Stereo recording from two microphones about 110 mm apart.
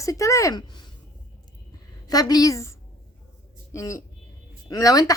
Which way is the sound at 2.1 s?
35° left (ahead or behind).